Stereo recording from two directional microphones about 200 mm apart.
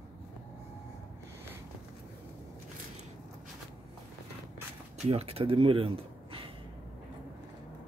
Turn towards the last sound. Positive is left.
turn(degrees=-30)  # may be behind; listen again after turning